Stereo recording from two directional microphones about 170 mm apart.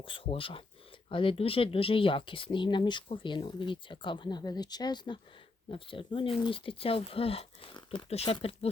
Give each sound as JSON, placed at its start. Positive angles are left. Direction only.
{"t": 0.0, "sound": "speech", "side_deg": 30}